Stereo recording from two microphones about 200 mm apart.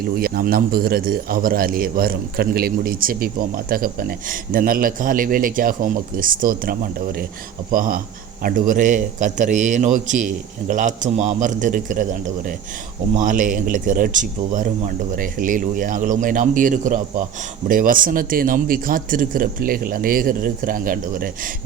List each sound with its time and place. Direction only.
0.2 s speech: 50° right (ahead or behind)
13.1 s speech: 40° right (ahead or behind)